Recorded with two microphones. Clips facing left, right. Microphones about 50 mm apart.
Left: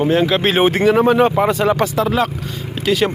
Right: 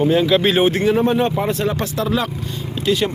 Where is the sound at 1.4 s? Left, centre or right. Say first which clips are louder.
Left 5 dB; left.